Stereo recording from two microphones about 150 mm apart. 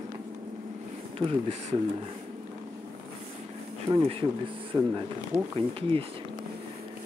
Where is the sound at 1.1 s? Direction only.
40° right (ahead or behind).